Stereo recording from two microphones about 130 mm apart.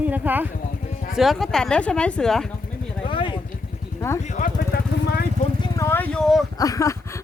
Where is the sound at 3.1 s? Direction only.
40° left (ahead or behind).